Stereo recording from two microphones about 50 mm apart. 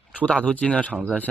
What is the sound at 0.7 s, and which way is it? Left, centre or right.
Speech, left.